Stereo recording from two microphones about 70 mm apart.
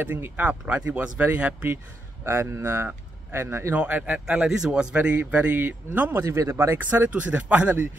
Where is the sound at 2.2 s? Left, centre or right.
Right.